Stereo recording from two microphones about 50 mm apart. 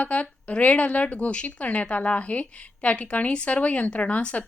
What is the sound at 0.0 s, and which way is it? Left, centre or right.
Speech, left.